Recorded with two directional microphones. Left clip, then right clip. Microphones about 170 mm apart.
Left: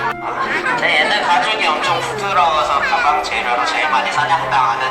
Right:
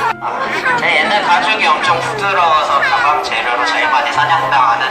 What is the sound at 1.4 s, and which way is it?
Speech, 20° left (ahead or behind).